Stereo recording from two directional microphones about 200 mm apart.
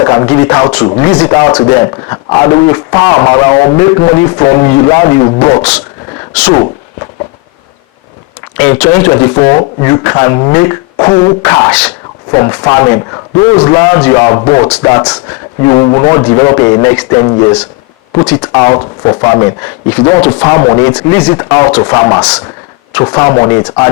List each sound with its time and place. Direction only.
0.0 s a man's voice: 20° left (ahead or behind)
6.3 s speech: 10° left (ahead or behind)
8.5 s a man's voice: 10° left (ahead or behind)
18.5 s a man's voice: 15° left (ahead or behind)